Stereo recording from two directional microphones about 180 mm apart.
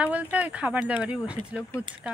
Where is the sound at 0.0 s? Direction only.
10° right (ahead or behind).